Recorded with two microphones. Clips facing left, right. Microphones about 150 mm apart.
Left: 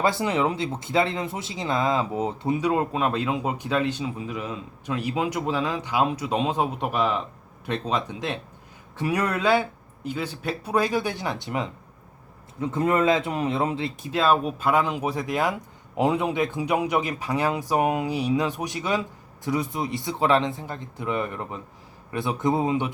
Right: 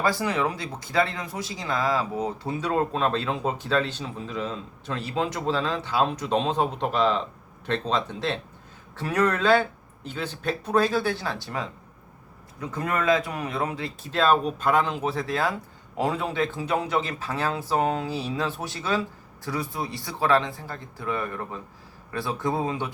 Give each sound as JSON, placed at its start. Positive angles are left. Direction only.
{"t": 0.0, "sound": "speech", "side_deg": 25}
{"t": 14.1, "sound": "speech", "side_deg": 10}